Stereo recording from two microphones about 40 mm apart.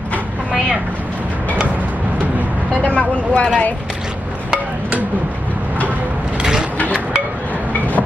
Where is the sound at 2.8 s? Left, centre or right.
Left.